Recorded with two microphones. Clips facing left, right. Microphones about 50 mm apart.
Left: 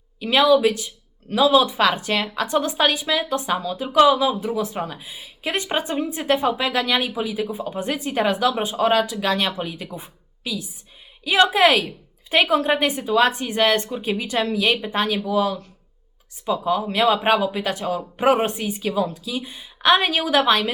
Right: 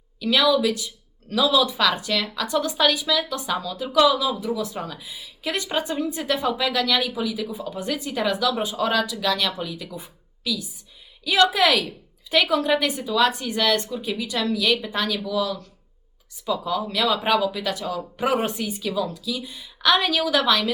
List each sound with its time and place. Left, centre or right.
0.2 s a woman's voice: left
9.9 s a sound: left
11.2 s a woman's voice: left